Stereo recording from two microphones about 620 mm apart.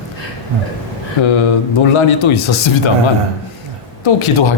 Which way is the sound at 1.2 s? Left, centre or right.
Left.